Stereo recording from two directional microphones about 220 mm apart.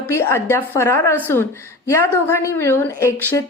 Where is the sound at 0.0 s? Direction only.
10° left (ahead or behind).